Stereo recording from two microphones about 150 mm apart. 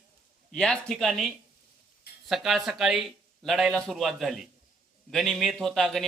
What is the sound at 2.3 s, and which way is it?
A man's voice, centre (ahead or behind).